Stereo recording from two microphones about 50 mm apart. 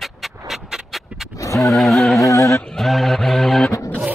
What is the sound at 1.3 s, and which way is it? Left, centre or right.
Vehicle, left.